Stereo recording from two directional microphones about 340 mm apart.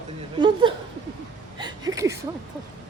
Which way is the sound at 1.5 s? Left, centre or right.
Centre.